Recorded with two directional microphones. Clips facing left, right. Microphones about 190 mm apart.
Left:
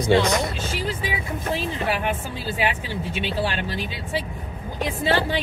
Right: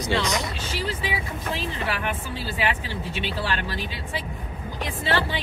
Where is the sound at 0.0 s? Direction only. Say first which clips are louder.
Left 6 dB; 55° left (ahead or behind).